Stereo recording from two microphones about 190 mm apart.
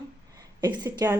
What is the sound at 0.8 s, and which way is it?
Speech, 20° right (ahead or behind).